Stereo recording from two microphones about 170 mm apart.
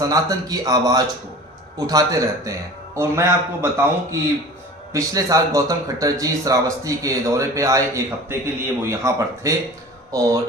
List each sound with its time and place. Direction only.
0.0 s a man's voice: 20° right (ahead or behind)